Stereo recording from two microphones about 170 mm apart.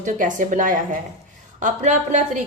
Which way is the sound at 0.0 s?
50° right (ahead or behind).